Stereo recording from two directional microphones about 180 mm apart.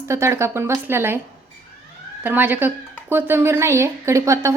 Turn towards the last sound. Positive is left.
turn(degrees=-15)  # may be behind; listen again after turning